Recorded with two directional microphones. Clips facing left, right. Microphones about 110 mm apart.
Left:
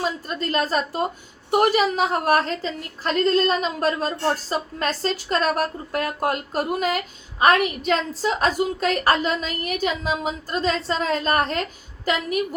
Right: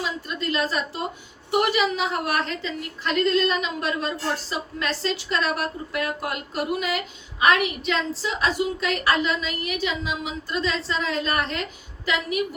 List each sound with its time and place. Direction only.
0.0 s a woman's voice: 40° left (ahead or behind)